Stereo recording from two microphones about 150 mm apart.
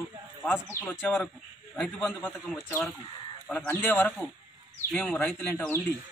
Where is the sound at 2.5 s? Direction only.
15° left (ahead or behind).